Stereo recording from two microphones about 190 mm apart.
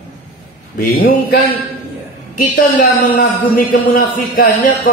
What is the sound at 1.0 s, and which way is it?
Speech, 55° left (ahead or behind).